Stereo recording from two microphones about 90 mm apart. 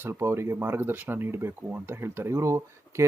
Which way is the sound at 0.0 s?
30° right (ahead or behind).